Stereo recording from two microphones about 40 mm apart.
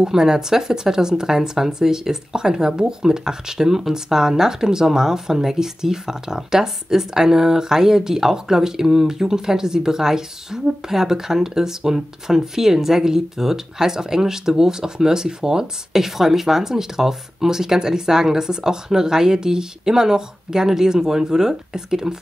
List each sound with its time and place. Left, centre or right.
0.0 s speech: centre